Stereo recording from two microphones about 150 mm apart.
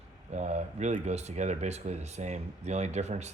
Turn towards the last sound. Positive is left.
turn(degrees=-50)  # may be behind; listen again after turning